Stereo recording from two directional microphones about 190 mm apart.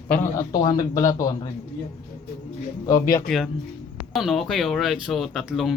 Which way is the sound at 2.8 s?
15° left (ahead or behind).